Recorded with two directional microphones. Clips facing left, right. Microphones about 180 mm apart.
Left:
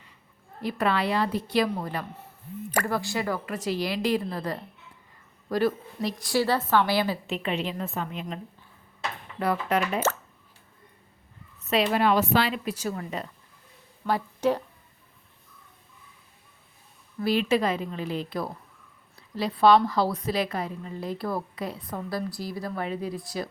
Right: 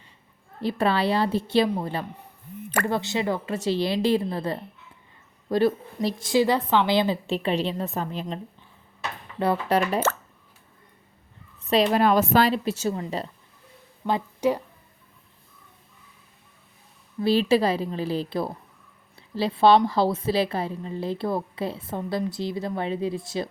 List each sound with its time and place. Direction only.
0.6 s a woman's voice: 30° right (ahead or behind)
7.3 s a woman's voice: 35° right (ahead or behind)
9.4 s a woman's voice: 30° right (ahead or behind)
11.6 s a woman's voice: 35° right (ahead or behind)
12.6 s a woman's voice: 25° right (ahead or behind)
14.1 s speech: 10° right (ahead or behind)
17.2 s a woman's voice: 30° right (ahead or behind)